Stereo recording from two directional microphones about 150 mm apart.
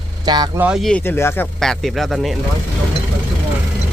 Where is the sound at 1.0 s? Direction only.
15° left (ahead or behind).